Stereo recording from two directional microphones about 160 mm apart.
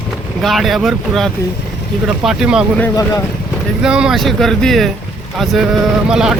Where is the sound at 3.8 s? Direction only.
5° right (ahead or behind).